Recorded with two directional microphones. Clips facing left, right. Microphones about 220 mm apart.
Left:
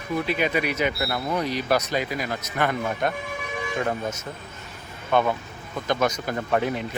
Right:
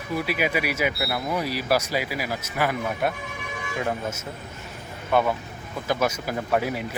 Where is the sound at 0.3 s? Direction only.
10° right (ahead or behind).